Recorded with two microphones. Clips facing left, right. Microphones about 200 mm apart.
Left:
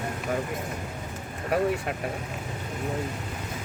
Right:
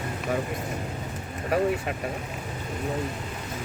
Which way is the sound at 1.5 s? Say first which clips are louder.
Right 1 dB; centre (ahead or behind).